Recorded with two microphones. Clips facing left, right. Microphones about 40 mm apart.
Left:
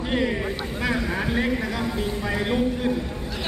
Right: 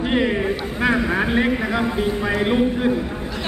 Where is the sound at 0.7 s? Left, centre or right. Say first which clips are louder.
Right 6 dB; right.